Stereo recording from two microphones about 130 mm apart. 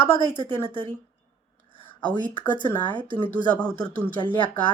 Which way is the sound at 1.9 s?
35° left (ahead or behind).